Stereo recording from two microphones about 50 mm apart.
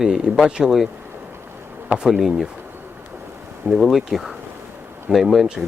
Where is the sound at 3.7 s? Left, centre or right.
Centre.